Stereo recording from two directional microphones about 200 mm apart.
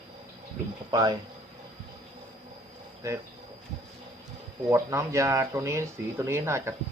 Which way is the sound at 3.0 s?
15° right (ahead or behind).